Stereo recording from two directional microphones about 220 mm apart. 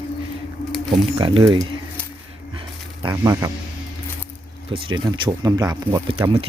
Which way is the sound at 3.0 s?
15° right (ahead or behind).